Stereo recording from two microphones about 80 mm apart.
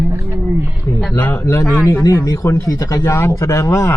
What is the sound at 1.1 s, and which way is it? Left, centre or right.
Speech, left.